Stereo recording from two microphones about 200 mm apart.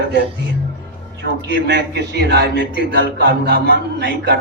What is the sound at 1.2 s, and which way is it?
A man's voice, 55° right (ahead or behind).